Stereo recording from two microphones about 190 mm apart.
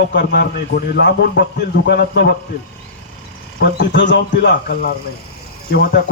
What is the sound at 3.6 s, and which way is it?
A man's voice, 65° left (ahead or behind).